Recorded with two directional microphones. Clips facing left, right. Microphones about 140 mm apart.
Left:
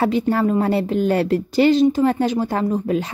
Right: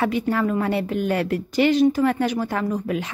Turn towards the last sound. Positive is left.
turn(degrees=30)  # may be behind; listen again after turning